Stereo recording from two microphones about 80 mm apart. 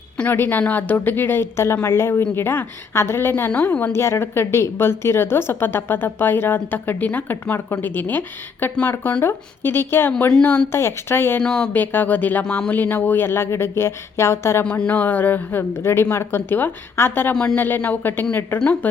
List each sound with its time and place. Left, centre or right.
0.2 s a woman's voice: left
10.1 s speech: centre
10.7 s speech: left
11.4 s speech: centre
11.7 s speech: left
14.6 s a woman's voice: centre
17.3 s speech: centre
17.6 s speech: left
18.6 s speech: centre